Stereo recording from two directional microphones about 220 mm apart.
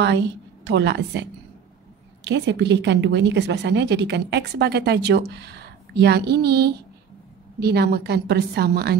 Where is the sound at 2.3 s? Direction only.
55° right (ahead or behind).